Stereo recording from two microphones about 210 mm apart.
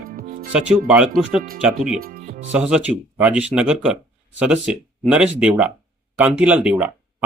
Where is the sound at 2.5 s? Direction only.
5° right (ahead or behind).